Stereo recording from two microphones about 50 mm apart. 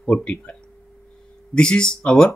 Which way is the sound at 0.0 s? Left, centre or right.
Centre.